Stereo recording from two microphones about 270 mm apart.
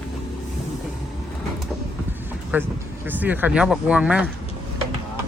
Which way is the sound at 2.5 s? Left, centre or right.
Centre.